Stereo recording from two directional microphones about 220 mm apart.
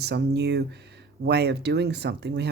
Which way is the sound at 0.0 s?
50° right (ahead or behind).